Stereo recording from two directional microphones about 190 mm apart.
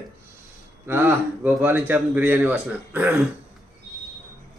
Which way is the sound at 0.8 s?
10° right (ahead or behind).